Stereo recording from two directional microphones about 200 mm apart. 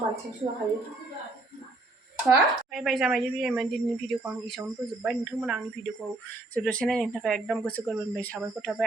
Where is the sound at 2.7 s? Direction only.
Centre (ahead or behind).